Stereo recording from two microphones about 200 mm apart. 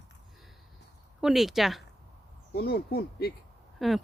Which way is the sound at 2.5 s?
50° left (ahead or behind).